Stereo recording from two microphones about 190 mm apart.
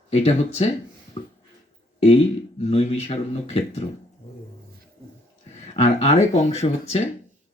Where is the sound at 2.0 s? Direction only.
35° left (ahead or behind).